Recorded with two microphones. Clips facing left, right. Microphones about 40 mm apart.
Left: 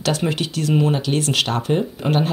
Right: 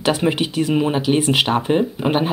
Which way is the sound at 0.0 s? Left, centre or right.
Right.